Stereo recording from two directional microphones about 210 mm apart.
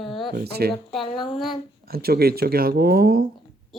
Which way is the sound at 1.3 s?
Centre (ahead or behind).